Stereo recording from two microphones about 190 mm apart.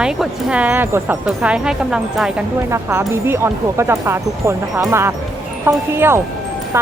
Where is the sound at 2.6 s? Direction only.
15° right (ahead or behind).